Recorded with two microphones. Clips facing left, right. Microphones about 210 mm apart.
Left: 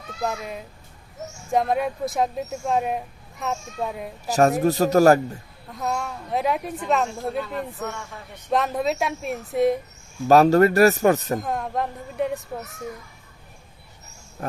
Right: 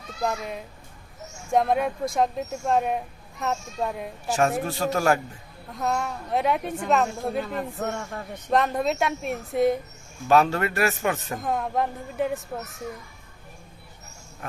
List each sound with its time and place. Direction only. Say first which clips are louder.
0.2 s speech: even; centre (ahead or behind)
4.3 s a man's voice: left 5 dB; 40° left (ahead or behind)
5.7 s speech: right 1 dB; centre (ahead or behind)
7.8 s a man's voice: right 3 dB; 50° right (ahead or behind)
8.4 s speech: even; centre (ahead or behind)
10.2 s a man's voice: left 6 dB; 40° left (ahead or behind)
11.3 s speech: even; centre (ahead or behind)